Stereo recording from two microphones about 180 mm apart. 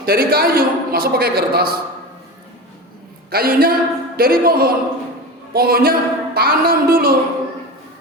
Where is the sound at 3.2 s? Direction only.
55° right (ahead or behind).